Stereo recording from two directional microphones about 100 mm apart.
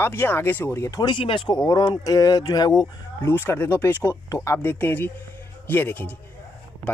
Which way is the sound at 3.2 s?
20° left (ahead or behind).